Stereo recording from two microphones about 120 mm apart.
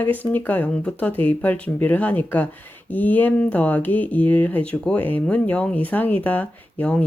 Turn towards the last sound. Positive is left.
turn(degrees=15)  # may be behind; listen again after turning